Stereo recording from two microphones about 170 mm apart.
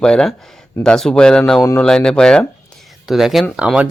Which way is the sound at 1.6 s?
20° left (ahead or behind).